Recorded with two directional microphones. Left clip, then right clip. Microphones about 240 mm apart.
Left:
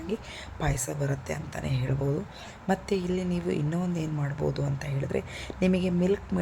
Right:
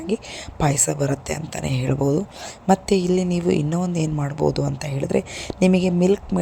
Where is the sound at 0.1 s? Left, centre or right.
Right.